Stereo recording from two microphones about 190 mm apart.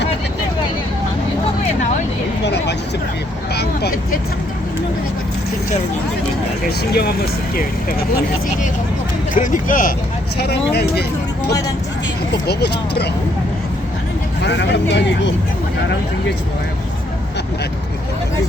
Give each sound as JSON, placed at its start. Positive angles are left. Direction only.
{"t": 2.4, "sound": "a sound", "side_deg": 65}
{"t": 3.5, "sound": "vehicle", "side_deg": 60}
{"t": 6.7, "sound": "speech", "side_deg": 55}
{"t": 9.3, "sound": "speech", "side_deg": 45}
{"t": 10.3, "sound": "speech", "side_deg": 60}
{"t": 12.5, "sound": "speech", "side_deg": 60}
{"t": 14.4, "sound": "speech", "side_deg": 65}